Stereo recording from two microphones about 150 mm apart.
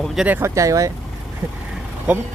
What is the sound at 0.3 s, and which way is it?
Speech, 15° right (ahead or behind).